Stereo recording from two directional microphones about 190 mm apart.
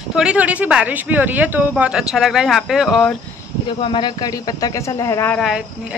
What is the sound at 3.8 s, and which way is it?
Speech, 25° left (ahead or behind).